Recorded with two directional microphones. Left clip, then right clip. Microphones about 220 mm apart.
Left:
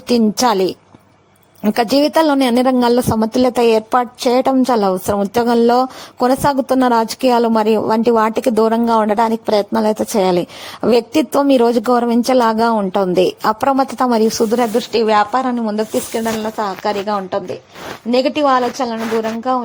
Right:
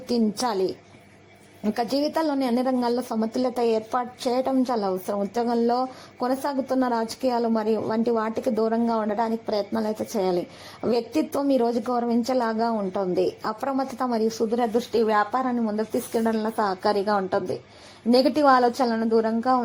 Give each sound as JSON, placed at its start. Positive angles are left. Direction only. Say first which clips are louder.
{"t": 0.1, "sound": "a woman's voice", "louder": "left 11 dB", "side_deg": 35}